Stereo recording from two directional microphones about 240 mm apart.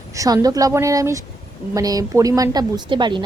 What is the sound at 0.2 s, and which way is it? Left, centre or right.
A woman's voice, centre.